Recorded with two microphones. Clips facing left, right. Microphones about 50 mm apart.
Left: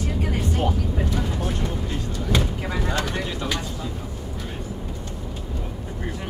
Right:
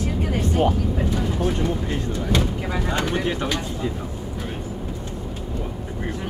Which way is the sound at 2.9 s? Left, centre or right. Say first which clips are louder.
Right 5 dB; centre.